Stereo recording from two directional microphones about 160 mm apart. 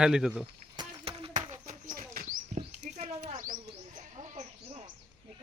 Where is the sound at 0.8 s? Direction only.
35° right (ahead or behind).